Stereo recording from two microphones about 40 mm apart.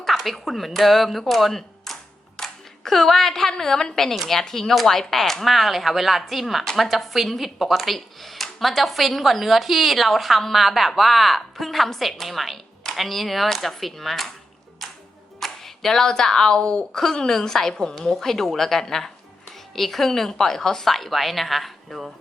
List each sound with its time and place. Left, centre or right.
0.3 s speech: centre
1.3 s a sound: centre
2.3 s clapping: centre
3.6 s a woman's voice: centre
15.4 s a woman's voice: centre